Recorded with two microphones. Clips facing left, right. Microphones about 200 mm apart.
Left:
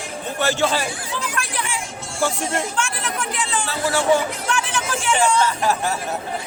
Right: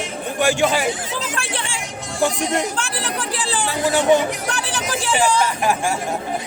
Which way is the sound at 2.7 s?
35° right (ahead or behind).